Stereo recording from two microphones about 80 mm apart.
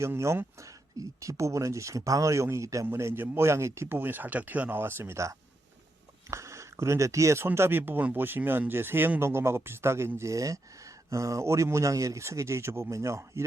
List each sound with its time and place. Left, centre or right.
0.0 s speech: right